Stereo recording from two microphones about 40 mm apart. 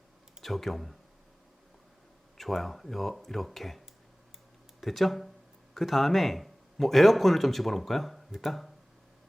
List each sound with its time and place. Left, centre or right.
0.4 s a man's voice: centre
2.4 s a man's voice: centre